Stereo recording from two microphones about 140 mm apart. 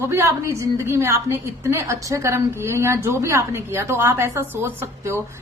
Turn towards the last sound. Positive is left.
turn(degrees=-20)  # may be behind; listen again after turning